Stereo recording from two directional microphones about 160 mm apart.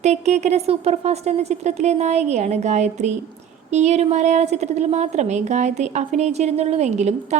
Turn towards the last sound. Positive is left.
turn(degrees=-45)  # may be behind; listen again after turning